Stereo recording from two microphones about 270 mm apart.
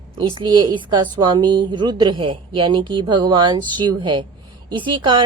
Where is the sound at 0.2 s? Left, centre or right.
Centre.